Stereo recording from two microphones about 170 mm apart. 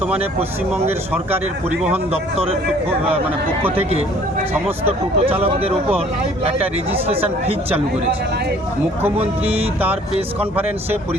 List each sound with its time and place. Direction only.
0.0 s speech: 10° right (ahead or behind)
4.8 s speech: 35° right (ahead or behind)
6.4 s speech: 35° right (ahead or behind)
9.1 s speech: 35° right (ahead or behind)